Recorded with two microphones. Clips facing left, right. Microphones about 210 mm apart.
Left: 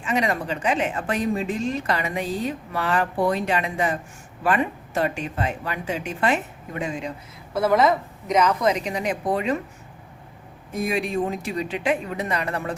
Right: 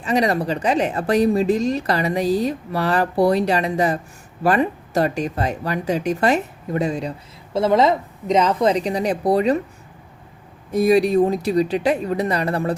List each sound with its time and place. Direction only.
0.0 s speech: 35° right (ahead or behind)
7.5 s speech: 25° right (ahead or behind)
10.7 s speech: 35° right (ahead or behind)